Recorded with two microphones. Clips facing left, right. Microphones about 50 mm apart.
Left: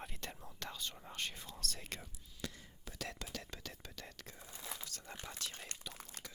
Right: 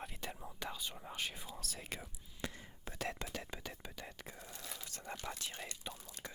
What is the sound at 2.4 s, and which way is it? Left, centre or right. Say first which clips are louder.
Whispering: right 2 dB; right.